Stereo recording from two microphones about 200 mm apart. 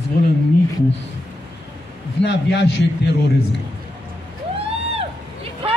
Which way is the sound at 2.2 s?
60° left (ahead or behind).